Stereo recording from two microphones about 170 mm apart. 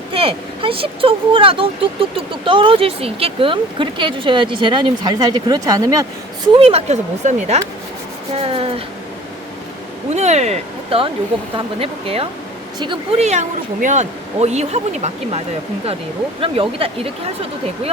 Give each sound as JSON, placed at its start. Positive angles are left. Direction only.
{"t": 0.1, "sound": "speech", "side_deg": -30}
{"t": 6.6, "sound": "speech", "side_deg": -35}
{"t": 10.2, "sound": "speech", "side_deg": -40}
{"t": 16.4, "sound": "speech", "side_deg": -35}